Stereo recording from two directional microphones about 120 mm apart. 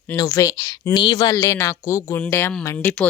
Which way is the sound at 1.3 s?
25° left (ahead or behind).